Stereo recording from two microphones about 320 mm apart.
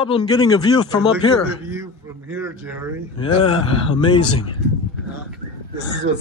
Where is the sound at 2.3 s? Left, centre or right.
Centre.